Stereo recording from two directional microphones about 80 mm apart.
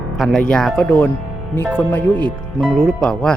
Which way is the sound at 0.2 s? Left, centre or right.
Centre.